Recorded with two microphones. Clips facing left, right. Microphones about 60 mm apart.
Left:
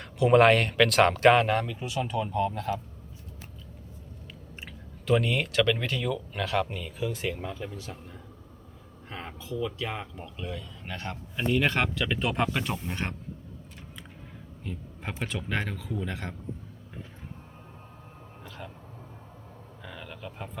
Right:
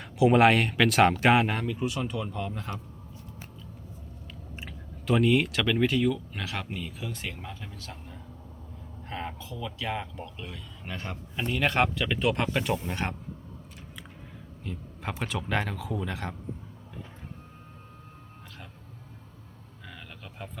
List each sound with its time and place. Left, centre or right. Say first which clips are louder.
0.0 s speech: left 1 dB; centre
4.6 s speech: right 1 dB; centre
9.0 s speech: right 2 dB; centre
11.7 s speech: right 2 dB; centre
12.0 s speech: right 1 dB; centre
14.6 s speech: right 1 dB; centre
19.9 s a sound: left 5 dB; centre